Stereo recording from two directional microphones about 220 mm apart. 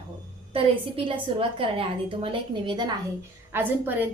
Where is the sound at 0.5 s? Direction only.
25° right (ahead or behind).